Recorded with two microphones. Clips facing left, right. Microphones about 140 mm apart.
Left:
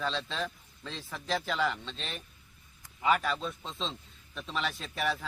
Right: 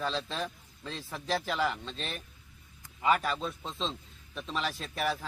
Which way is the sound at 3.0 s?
5° right (ahead or behind).